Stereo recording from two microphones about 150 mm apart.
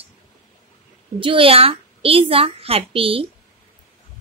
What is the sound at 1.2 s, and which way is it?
A woman's voice, 35° right (ahead or behind).